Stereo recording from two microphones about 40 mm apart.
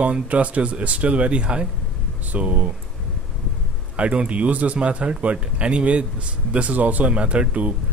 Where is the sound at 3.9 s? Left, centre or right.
Right.